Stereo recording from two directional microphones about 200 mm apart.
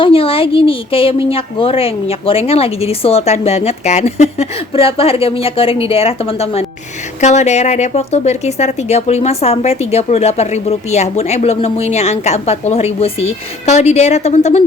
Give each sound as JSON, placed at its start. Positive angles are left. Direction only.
{"t": 0.0, "sound": "a woman's voice", "side_deg": 25}